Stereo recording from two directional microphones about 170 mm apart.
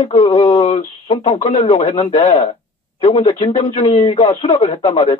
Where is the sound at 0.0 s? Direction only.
40° left (ahead or behind).